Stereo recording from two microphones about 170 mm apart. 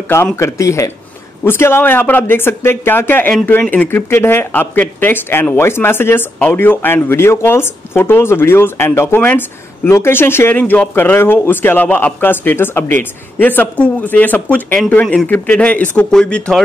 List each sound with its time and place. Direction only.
0.1 s speech: 15° left (ahead or behind)